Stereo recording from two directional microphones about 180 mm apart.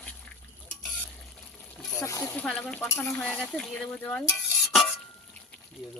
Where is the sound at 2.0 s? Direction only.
15° left (ahead or behind).